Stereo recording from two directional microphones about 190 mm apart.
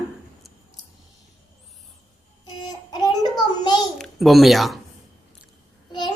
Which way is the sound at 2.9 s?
20° left (ahead or behind).